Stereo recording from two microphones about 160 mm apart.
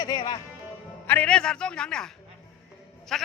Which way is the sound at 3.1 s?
5° left (ahead or behind).